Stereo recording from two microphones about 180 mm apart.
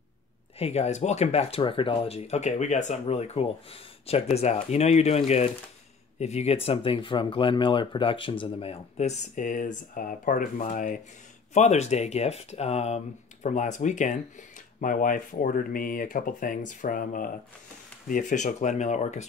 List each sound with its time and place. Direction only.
0.6 s speech: 35° left (ahead or behind)